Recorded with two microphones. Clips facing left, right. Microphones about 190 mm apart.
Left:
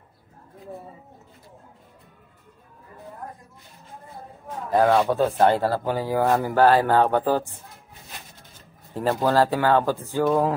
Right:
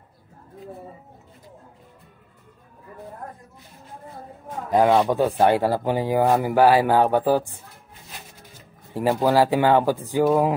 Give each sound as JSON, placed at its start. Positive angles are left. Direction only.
{"t": 4.6, "sound": "speech", "side_deg": -15}
{"t": 8.9, "sound": "speech", "side_deg": -10}